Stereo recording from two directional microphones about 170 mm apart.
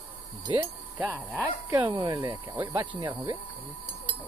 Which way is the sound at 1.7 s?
30° right (ahead or behind).